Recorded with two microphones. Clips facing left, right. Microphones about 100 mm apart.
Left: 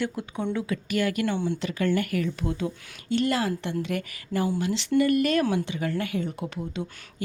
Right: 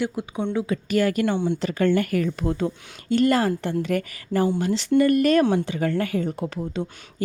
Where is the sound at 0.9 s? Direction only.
40° right (ahead or behind).